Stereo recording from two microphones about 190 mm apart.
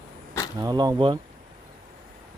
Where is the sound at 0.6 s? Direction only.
20° right (ahead or behind).